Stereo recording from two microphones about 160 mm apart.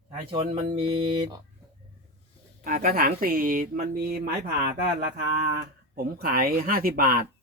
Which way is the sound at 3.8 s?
85° right.